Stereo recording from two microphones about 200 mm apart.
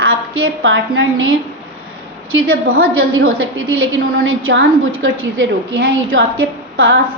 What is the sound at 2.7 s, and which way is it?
A woman's voice, 90° right.